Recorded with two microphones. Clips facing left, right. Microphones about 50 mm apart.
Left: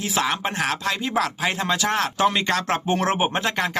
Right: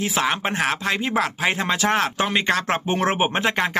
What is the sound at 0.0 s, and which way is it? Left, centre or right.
Speech, centre.